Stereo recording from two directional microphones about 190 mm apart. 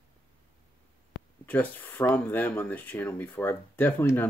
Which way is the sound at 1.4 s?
10° left (ahead or behind).